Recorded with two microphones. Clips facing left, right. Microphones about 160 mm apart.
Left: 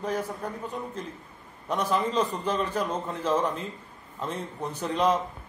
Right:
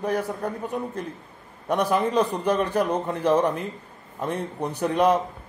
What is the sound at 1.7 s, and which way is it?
Speech, 60° right (ahead or behind).